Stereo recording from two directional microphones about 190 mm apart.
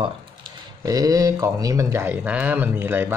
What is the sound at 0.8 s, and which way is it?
Speech, 20° right (ahead or behind).